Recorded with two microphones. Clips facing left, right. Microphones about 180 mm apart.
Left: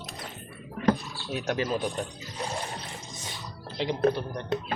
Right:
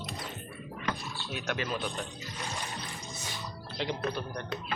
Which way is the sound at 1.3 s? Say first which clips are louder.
Left 6 dB; 35° left (ahead or behind).